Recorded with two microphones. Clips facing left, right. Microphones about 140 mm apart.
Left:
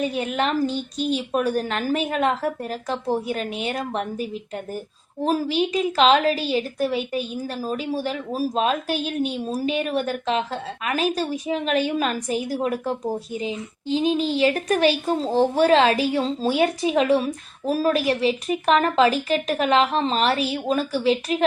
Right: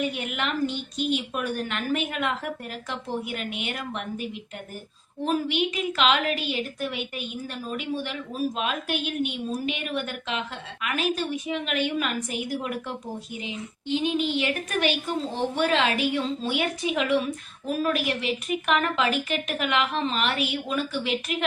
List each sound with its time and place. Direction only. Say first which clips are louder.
0.0 s a woman's voice: left 5 dB; 35° left (ahead or behind)